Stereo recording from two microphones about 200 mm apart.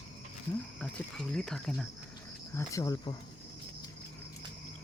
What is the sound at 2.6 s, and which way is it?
Speech, 15° left (ahead or behind).